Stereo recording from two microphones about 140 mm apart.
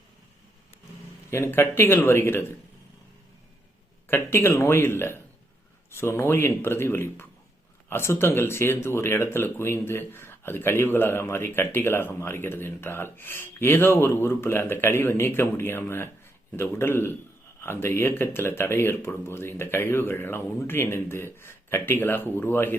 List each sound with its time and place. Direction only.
1.3 s speech: 15° left (ahead or behind)
4.1 s speech: 15° left (ahead or behind)